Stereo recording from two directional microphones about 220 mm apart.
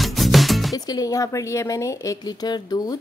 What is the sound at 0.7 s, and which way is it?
A woman's voice, 15° left (ahead or behind).